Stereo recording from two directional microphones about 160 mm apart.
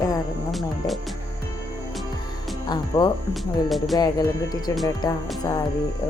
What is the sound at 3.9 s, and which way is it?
Speech, 25° left (ahead or behind).